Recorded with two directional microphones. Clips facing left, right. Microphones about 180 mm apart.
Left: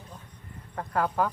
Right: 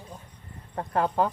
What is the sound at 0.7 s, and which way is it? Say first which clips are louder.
Cricket: right 2 dB; 25° right (ahead or behind).